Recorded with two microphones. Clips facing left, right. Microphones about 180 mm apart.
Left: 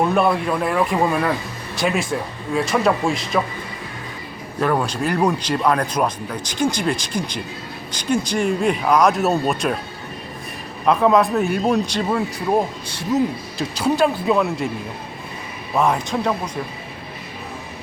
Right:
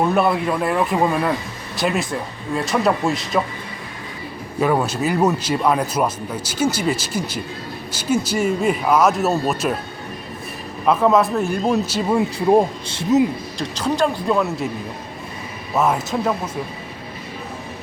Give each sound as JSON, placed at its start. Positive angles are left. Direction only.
{"t": 0.1, "sound": "speech", "side_deg": 0}
{"t": 4.6, "sound": "speech", "side_deg": -5}
{"t": 10.8, "sound": "speech", "side_deg": 0}
{"t": 12.5, "sound": "speech", "side_deg": -25}
{"t": 13.6, "sound": "speech", "side_deg": 10}
{"t": 15.7, "sound": "speech", "side_deg": -5}